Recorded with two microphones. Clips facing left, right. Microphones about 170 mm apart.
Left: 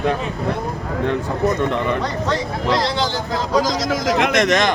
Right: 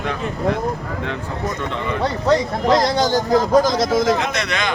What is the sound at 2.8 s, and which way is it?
Speech, 45° right (ahead or behind).